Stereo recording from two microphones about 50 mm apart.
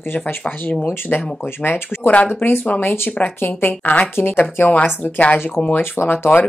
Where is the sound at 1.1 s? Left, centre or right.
Left.